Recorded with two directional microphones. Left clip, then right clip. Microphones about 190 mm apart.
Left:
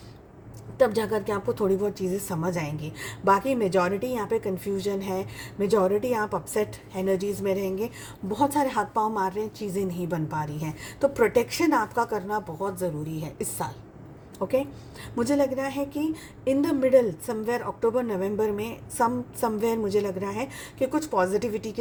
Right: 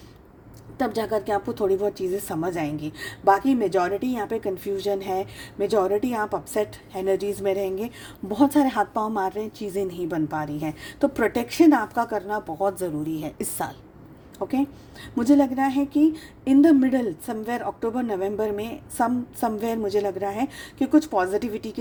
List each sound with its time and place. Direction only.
0.8 s a woman's voice: 40° right (ahead or behind)
15.1 s a woman's voice: 40° right (ahead or behind)